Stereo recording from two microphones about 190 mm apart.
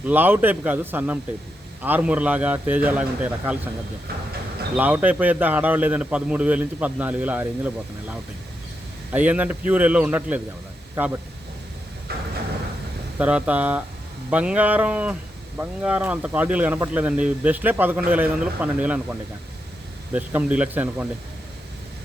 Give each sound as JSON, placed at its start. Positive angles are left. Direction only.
{"t": 0.0, "sound": "speech", "side_deg": -10}
{"t": 4.8, "sound": "speech", "side_deg": -10}
{"t": 12.1, "sound": "a sound", "side_deg": -55}
{"t": 13.1, "sound": "speech", "side_deg": -5}
{"t": 20.1, "sound": "speech", "side_deg": -10}